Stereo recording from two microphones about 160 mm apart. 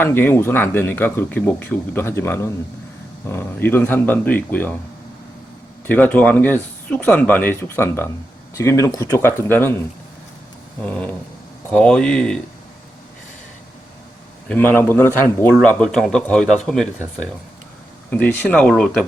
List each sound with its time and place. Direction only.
0.0 s speech: 15° left (ahead or behind)
5.9 s speech: 10° left (ahead or behind)
10.8 s speech: 5° left (ahead or behind)
14.4 s speech: 10° left (ahead or behind)
18.1 s speech: 10° left (ahead or behind)